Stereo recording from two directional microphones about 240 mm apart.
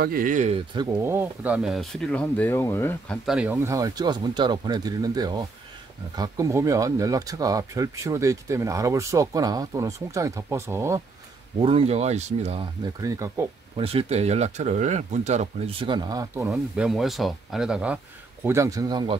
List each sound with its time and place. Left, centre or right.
0.0 s speech: right
0.7 s speech: centre
3.3 s speech: centre
11.6 s speech: right
12.8 s speech: centre
13.7 s speech: right
16.5 s speech: centre